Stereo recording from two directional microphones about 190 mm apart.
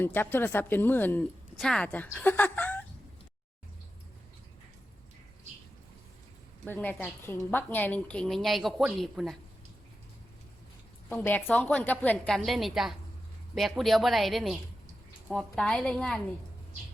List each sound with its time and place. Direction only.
0.0 s speech: 10° left (ahead or behind)
6.7 s speech: 10° left (ahead or behind)
11.1 s speech: 10° left (ahead or behind)